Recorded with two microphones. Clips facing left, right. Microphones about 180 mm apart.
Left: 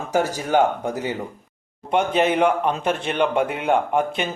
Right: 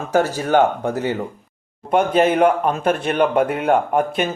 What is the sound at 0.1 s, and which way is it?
Speech, 15° left (ahead or behind).